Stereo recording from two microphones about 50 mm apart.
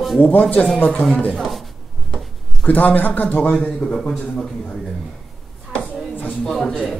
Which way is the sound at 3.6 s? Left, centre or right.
Left.